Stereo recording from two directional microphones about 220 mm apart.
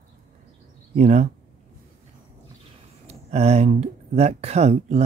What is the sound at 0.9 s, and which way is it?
Speech, 35° right (ahead or behind).